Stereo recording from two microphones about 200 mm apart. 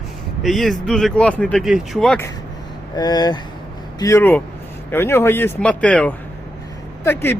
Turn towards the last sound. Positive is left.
turn(degrees=10)  # may be behind; listen again after turning